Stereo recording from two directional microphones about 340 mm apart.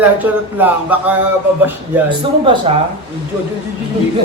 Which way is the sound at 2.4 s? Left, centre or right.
Centre.